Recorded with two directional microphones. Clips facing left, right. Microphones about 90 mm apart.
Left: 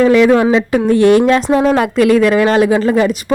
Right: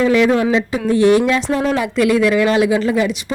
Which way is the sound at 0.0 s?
65° left (ahead or behind).